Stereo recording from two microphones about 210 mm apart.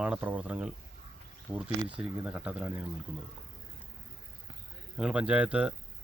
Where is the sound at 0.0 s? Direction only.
5° right (ahead or behind).